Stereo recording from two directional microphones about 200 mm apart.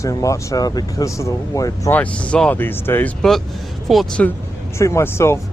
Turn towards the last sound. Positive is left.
turn(degrees=10)  # may be behind; listen again after turning